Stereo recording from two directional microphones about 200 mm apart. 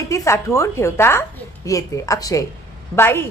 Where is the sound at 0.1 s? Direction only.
15° left (ahead or behind).